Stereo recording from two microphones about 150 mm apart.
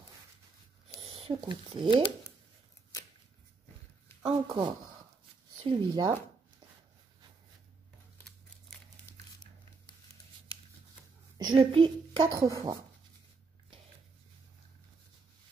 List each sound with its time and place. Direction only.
1.0 s speech: 30° right (ahead or behind)
4.3 s speech: 30° right (ahead or behind)
9.1 s a sound: 30° left (ahead or behind)
11.3 s a child's voice: 30° right (ahead or behind)
12.4 s speech: 20° right (ahead or behind)